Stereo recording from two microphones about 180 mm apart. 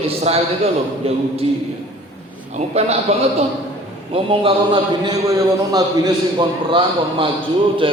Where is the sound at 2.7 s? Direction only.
35° right (ahead or behind).